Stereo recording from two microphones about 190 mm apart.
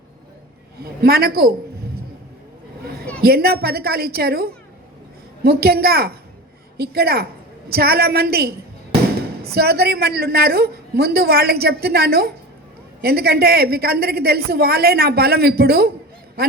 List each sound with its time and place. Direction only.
1.0 s a woman's voice: 55° right (ahead or behind)
3.2 s a woman's voice: 55° right (ahead or behind)